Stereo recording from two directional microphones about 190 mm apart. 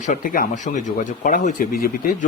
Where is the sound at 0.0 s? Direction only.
45° left (ahead or behind).